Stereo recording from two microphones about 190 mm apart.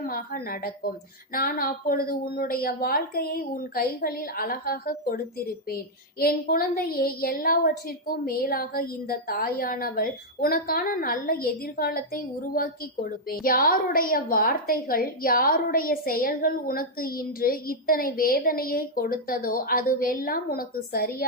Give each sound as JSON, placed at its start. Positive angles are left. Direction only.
{"t": 0.1, "sound": "a woman's voice", "side_deg": 50}